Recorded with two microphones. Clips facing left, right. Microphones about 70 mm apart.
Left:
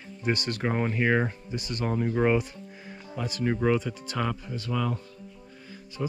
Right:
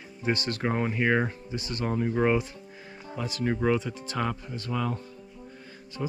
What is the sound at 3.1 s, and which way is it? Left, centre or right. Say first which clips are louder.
Speech: even; left.